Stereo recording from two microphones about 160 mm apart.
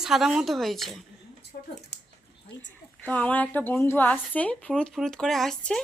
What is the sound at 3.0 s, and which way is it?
A woman's voice, 10° left (ahead or behind).